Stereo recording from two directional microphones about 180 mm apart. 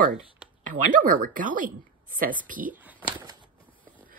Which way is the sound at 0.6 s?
50° right (ahead or behind).